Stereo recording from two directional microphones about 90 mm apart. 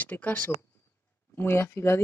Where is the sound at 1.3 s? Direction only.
30° left (ahead or behind).